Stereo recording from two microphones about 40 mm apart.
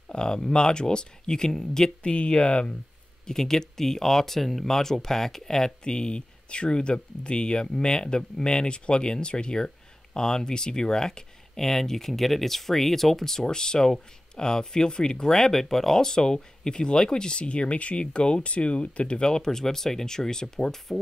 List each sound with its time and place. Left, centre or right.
0.1 s speech: centre
2.1 s speech: left
3.3 s speech: centre